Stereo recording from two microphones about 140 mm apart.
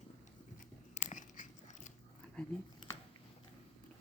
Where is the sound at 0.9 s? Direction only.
60° left (ahead or behind).